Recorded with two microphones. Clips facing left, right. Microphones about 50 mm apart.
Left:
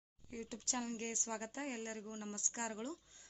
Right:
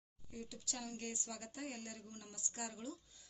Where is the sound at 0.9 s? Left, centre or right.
Left.